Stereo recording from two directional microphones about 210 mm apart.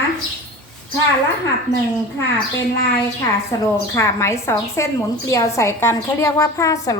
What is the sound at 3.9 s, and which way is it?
A woman's voice, 15° left (ahead or behind).